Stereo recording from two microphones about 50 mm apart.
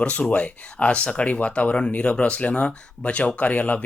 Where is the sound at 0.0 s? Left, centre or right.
Left.